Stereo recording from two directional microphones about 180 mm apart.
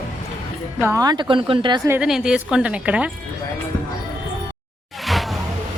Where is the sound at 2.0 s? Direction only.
5° right (ahead or behind).